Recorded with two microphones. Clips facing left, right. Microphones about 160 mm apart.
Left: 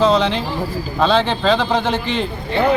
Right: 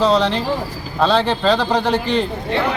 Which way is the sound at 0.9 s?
Centre (ahead or behind).